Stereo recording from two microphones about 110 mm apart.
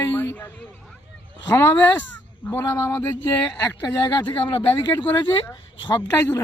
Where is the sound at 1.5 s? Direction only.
20° left (ahead or behind).